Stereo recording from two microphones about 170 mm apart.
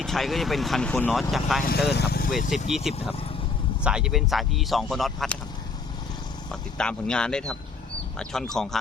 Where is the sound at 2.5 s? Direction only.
Centre (ahead or behind).